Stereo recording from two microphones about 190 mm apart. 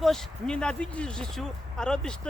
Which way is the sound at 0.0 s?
Centre (ahead or behind).